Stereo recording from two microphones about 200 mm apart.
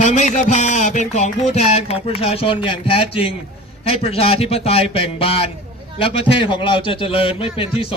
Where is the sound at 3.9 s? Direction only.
30° left (ahead or behind).